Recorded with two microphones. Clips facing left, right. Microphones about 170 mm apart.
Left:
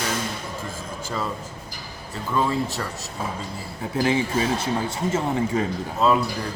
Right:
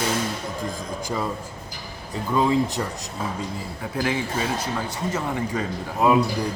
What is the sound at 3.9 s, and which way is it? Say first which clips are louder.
Speech: left 3 dB; 25° left (ahead or behind).